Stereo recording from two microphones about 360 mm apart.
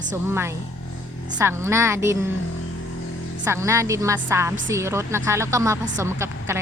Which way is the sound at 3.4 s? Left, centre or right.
Centre.